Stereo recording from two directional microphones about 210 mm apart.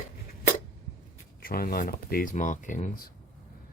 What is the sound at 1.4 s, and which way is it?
Speech, 45° left (ahead or behind).